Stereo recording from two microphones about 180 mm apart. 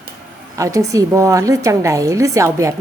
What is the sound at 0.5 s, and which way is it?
A woman's voice, 15° right (ahead or behind).